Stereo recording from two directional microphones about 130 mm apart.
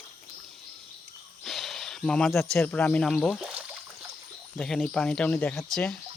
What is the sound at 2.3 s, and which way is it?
Speech, 20° left (ahead or behind).